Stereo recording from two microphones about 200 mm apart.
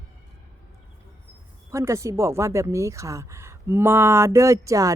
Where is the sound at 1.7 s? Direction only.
15° right (ahead or behind).